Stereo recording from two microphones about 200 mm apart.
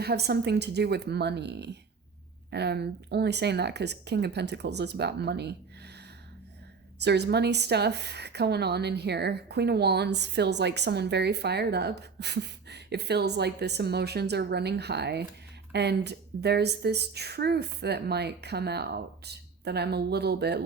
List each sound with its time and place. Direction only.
0.0 s a woman's voice: 55° right (ahead or behind)
7.0 s a woman's voice: 55° right (ahead or behind)